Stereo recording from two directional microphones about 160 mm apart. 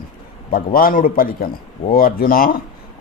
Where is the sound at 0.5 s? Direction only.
65° left (ahead or behind).